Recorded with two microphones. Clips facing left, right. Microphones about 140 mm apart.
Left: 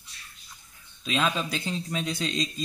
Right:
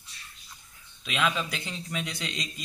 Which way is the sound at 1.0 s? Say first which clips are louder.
Left 2 dB; 35° left (ahead or behind).